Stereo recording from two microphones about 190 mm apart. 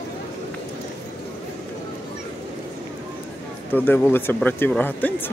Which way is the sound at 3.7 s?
10° left (ahead or behind).